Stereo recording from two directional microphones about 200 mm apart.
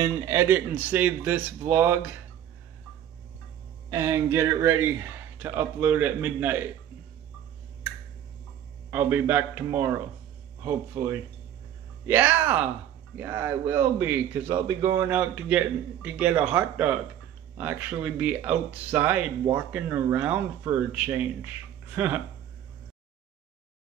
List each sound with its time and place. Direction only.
0.0 s a man's voice: 15° right (ahead or behind)
3.9 s a man's voice: 15° right (ahead or behind)
8.9 s a man's voice: 10° right (ahead or behind)